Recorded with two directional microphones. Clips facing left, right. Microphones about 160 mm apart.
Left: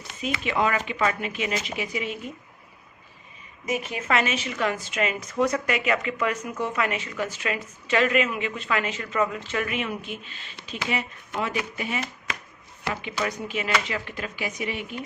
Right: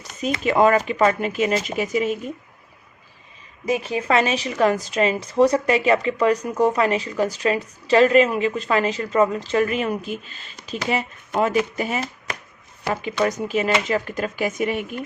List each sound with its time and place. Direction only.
0.0 s a woman's voice: 40° right (ahead or behind)
3.7 s a woman's voice: 30° right (ahead or behind); by 15.0 s 50° right (ahead or behind)